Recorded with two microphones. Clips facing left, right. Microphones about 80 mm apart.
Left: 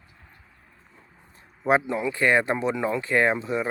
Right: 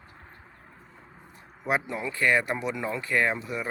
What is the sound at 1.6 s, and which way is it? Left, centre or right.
Speech, left.